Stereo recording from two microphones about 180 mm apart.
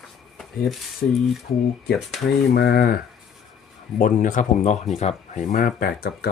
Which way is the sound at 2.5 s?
60° left (ahead or behind).